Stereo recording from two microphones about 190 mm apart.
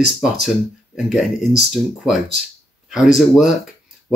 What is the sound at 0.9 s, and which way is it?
Speech, centre (ahead or behind).